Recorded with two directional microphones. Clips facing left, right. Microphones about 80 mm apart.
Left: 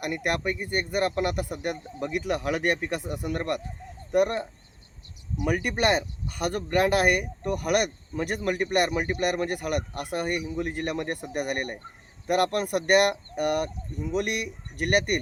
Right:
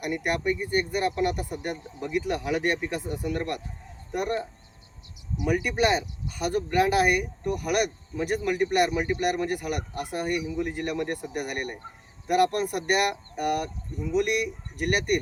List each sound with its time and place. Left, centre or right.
0.0 s speech: left
5.4 s speech: left